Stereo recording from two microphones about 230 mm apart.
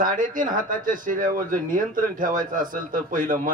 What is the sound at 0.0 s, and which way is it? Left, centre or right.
Speech, right.